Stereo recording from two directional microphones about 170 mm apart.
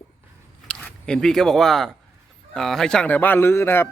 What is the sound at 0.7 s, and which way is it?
Speech, 5° left (ahead or behind).